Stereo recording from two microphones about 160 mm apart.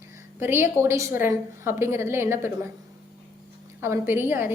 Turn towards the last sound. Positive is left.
turn(degrees=-15)  # may be behind; listen again after turning